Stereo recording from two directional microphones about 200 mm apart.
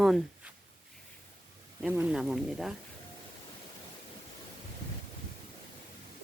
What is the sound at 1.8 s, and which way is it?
Speech, 5° right (ahead or behind).